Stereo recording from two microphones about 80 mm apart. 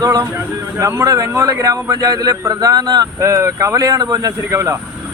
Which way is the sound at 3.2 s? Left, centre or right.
Right.